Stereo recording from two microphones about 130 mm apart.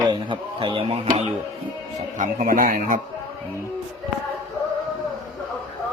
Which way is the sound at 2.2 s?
90° right.